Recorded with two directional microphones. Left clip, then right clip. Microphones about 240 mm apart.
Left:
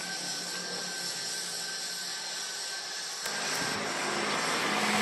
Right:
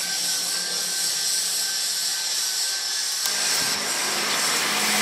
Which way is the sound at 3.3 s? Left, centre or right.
Centre.